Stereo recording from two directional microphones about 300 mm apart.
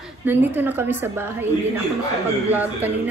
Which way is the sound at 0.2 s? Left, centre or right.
Centre.